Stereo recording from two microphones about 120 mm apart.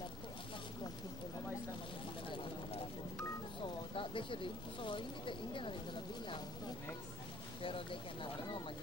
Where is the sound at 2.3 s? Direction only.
45° left (ahead or behind).